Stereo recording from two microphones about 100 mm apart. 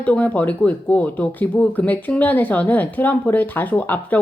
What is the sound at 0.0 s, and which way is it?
A woman's voice, 15° left (ahead or behind).